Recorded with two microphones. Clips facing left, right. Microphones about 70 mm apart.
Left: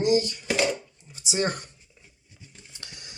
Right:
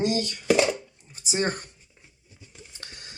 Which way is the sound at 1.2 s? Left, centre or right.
Right.